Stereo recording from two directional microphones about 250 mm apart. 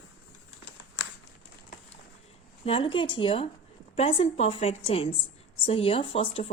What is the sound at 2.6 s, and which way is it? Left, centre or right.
A woman's voice, left.